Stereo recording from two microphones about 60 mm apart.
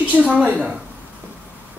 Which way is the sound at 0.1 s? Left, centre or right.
Right.